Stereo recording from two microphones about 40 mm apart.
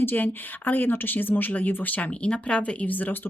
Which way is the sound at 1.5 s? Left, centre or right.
Left.